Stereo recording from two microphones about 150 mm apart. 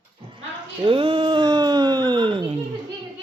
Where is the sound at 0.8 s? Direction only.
35° right (ahead or behind).